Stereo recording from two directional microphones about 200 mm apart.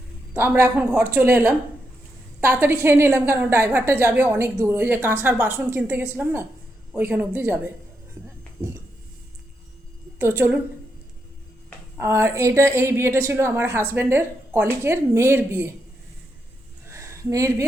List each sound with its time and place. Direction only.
0.3 s a woman's voice: 10° right (ahead or behind)
10.2 s a woman's voice: 10° right (ahead or behind)
11.9 s a woman's voice: 15° right (ahead or behind)
16.9 s a sound: 15° right (ahead or behind)